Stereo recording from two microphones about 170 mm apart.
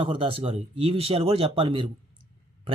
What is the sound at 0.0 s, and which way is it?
A man's voice, 30° right (ahead or behind).